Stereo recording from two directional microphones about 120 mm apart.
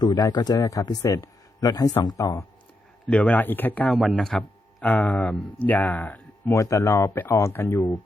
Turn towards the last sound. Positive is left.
turn(degrees=20)  # may be behind; listen again after turning